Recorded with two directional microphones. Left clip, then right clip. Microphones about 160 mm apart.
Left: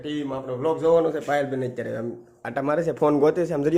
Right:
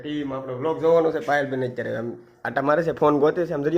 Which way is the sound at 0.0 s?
15° left (ahead or behind).